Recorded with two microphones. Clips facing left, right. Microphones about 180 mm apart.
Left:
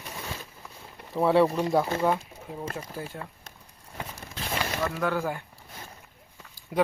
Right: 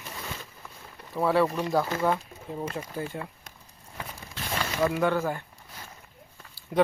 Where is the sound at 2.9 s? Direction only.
5° left (ahead or behind).